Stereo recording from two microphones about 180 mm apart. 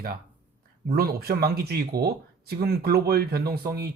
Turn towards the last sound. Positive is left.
turn(degrees=-55)  # may be behind; listen again after turning